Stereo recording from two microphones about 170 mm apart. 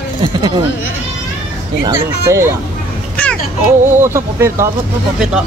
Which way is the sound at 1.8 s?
15° right (ahead or behind).